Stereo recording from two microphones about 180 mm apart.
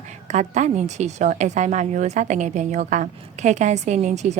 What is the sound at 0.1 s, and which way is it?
A woman's voice, 40° right (ahead or behind).